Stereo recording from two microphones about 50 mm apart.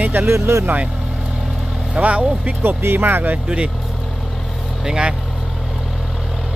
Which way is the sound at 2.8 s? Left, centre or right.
Right.